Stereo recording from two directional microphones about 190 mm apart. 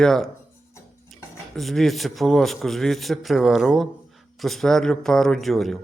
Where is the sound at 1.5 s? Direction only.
Centre (ahead or behind).